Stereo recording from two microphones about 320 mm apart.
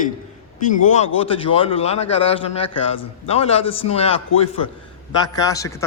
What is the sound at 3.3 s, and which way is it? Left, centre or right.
Speech, centre.